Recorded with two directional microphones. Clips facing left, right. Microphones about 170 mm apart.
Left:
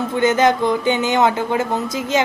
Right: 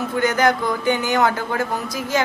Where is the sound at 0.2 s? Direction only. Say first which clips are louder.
Left 3 dB; 25° left (ahead or behind).